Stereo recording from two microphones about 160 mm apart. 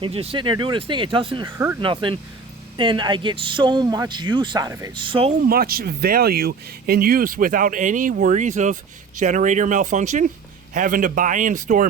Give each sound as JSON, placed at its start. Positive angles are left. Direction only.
{"t": 0.0, "sound": "a man's voice", "side_deg": -35}
{"t": 5.0, "sound": "speech", "side_deg": -35}
{"t": 5.4, "sound": "speech", "side_deg": -70}